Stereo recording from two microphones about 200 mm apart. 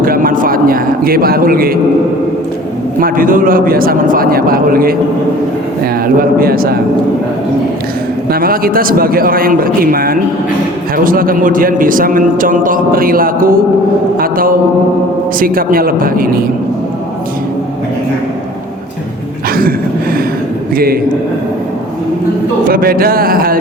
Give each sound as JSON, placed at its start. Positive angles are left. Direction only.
{"t": 0.0, "sound": "a man's voice", "side_deg": -45}
{"t": 3.0, "sound": "a man's voice", "side_deg": -45}
{"t": 8.3, "sound": "a man's voice", "side_deg": -45}
{"t": 19.5, "sound": "a sound", "side_deg": -45}
{"t": 20.7, "sound": "a man's voice", "side_deg": -50}
{"t": 22.6, "sound": "a man's voice", "side_deg": -45}